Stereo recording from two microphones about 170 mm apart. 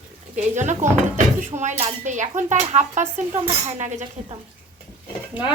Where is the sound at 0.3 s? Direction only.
45° right (ahead or behind).